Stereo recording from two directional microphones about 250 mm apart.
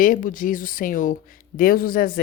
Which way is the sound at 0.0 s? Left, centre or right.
Left.